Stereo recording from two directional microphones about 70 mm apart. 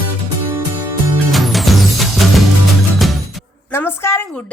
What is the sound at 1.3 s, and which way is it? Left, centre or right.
Music, centre.